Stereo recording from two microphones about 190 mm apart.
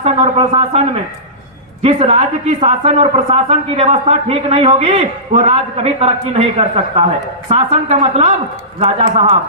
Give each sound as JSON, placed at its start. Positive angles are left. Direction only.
{"t": 0.0, "sound": "a woman's voice", "side_deg": -30}
{"t": 1.8, "sound": "a woman's voice", "side_deg": -35}